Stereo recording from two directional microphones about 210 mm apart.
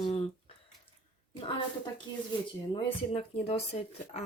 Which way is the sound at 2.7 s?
25° left (ahead or behind).